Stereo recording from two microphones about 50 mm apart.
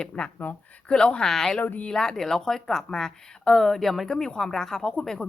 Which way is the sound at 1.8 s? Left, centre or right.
Centre.